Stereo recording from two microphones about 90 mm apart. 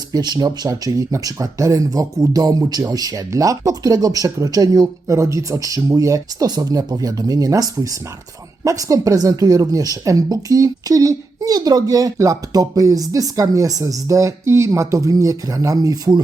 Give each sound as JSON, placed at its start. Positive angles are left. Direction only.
{"t": 0.1, "sound": "a woman's voice", "side_deg": -45}